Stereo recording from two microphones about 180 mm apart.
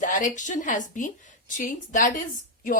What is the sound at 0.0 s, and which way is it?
A woman's voice, 45° left (ahead or behind).